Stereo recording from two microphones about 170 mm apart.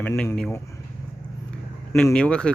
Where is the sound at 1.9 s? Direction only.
5° left (ahead or behind).